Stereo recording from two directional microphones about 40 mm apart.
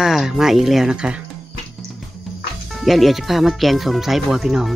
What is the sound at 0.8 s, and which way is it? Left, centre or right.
Speech, right.